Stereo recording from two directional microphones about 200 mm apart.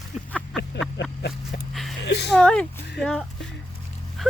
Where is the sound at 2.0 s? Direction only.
60° left (ahead or behind).